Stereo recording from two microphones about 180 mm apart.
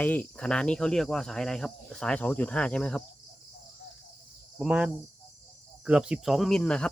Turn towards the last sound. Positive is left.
turn(degrees=5)  # may be behind; listen again after turning